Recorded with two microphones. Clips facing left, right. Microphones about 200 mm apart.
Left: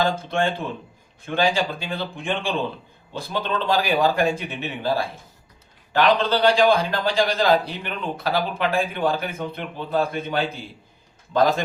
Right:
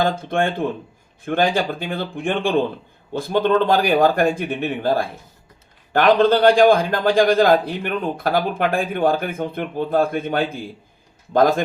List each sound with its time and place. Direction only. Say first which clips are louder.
0.0 s a man's voice: right 2 dB; 55° right (ahead or behind)